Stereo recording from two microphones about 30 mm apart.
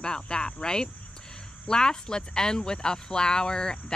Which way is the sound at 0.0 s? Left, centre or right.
Left.